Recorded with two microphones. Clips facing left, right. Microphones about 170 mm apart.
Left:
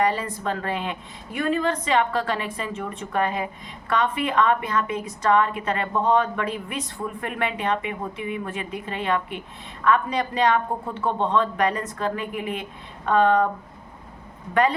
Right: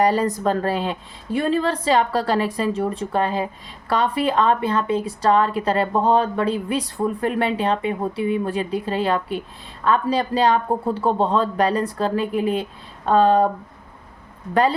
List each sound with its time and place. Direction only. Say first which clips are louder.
0.0 s a woman's voice: right 5 dB; 40° right (ahead or behind)
14.5 s a woman's voice: right 2 dB; 30° right (ahead or behind)